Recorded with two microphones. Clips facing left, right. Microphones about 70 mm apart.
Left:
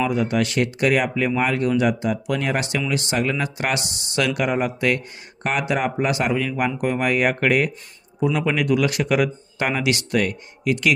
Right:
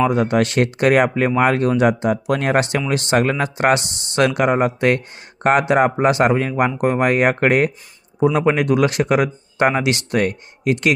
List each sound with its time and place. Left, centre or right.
0.1 s speech: right